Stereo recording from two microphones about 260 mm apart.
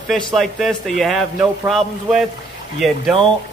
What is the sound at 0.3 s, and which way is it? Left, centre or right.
A man's voice, centre.